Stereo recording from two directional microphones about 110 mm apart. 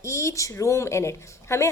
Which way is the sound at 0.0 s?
25° left (ahead or behind).